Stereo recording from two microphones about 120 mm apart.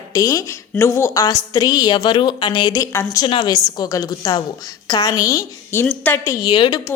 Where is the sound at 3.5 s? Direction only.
30° left (ahead or behind).